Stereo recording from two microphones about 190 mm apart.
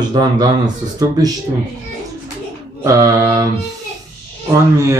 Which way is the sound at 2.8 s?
15° right (ahead or behind).